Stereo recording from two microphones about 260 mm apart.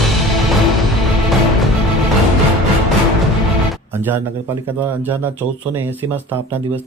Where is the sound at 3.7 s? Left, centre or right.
Centre.